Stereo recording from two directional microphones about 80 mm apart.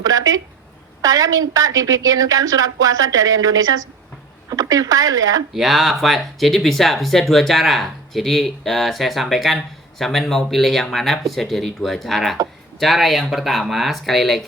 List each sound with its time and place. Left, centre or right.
0.0 s a woman's voice: right
5.5 s speech: centre